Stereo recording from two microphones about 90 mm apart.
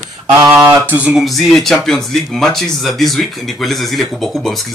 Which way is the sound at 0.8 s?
15° right (ahead or behind).